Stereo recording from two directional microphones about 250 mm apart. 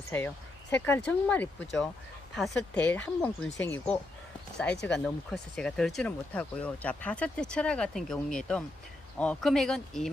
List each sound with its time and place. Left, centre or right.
0.7 s speech: centre